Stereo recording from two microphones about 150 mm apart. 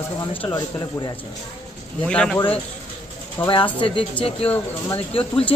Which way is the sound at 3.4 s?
35° left (ahead or behind).